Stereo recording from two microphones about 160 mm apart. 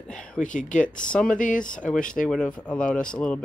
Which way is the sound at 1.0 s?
5° left (ahead or behind).